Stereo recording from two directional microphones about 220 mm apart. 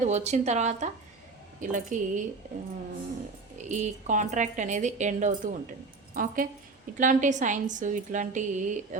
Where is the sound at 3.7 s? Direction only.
35° right (ahead or behind).